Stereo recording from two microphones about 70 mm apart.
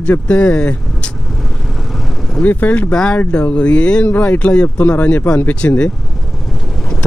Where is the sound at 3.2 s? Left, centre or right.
Left.